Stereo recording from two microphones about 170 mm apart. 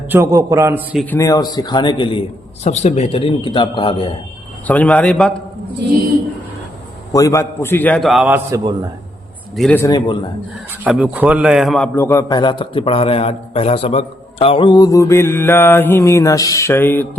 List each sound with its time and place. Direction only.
0.1 s a man's voice: 20° right (ahead or behind)
1.1 s a man's voice: 20° left (ahead or behind)
2.6 s a man's voice: 40° left (ahead or behind)
4.6 s a man's voice: 10° left (ahead or behind)
7.1 s a man's voice: 20° left (ahead or behind); by 8.4 s 5° right (ahead or behind)
9.6 s a man's voice: 5° left (ahead or behind)
9.8 s a man's voice: 25° left (ahead or behind)
10.8 s a man's voice: 5° right (ahead or behind)
11.9 s a man's voice: 15° left (ahead or behind)